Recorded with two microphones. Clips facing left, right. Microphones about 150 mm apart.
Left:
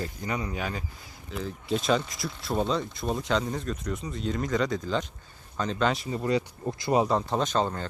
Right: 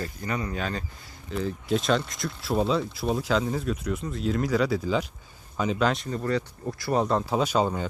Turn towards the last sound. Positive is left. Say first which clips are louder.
# right 2 dB
turn(degrees=-10)  # may be behind; listen again after turning